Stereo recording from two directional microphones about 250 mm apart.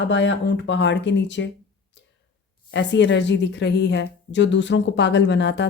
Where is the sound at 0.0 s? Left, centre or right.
Left.